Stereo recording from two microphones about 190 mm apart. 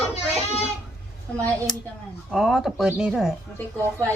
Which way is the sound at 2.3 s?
Centre (ahead or behind).